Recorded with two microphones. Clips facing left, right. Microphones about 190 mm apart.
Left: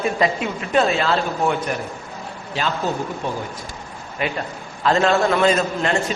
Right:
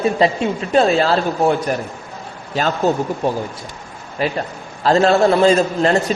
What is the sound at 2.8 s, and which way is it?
A man's voice, 45° right (ahead or behind).